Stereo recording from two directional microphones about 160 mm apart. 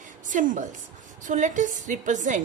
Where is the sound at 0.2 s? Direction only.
55° right (ahead or behind).